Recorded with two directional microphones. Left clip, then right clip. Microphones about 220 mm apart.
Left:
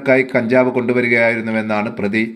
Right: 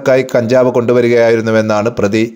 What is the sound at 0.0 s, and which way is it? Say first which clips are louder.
Speech: right 4 dB; 50° right (ahead or behind).